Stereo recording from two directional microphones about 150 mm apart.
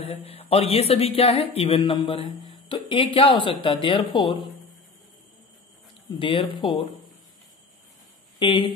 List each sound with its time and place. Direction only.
0.0 s speech: 40° left (ahead or behind)
6.1 s speech: 35° left (ahead or behind)
8.4 s speech: 35° left (ahead or behind)